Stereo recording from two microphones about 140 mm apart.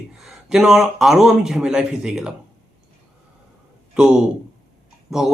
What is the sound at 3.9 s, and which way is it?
A man's voice, 5° right (ahead or behind).